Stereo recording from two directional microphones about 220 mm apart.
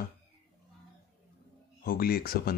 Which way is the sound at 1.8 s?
45° left (ahead or behind).